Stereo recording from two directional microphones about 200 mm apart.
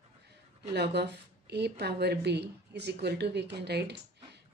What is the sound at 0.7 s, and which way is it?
Speech, 60° right (ahead or behind).